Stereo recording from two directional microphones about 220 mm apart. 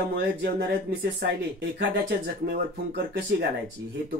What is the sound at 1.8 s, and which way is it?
Speech, 50° right (ahead or behind).